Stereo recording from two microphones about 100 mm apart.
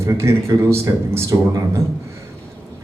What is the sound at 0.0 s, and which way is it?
A man's voice, 25° right (ahead or behind).